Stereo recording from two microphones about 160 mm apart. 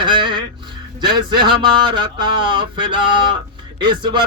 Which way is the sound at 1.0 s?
30° right (ahead or behind).